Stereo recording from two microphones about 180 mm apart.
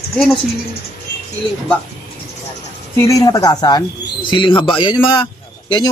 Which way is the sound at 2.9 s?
15° left (ahead or behind).